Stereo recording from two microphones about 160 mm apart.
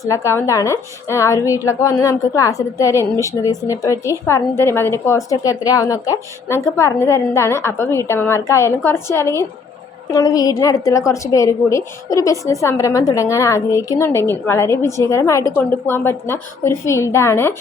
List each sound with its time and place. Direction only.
0.0 s a woman's voice: 20° left (ahead or behind)